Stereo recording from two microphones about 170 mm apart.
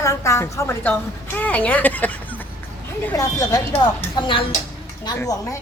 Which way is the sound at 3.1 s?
20° left (ahead or behind).